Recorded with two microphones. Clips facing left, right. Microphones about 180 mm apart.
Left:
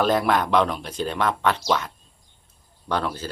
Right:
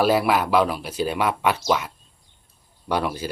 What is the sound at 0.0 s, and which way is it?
Speech, 5° right (ahead or behind).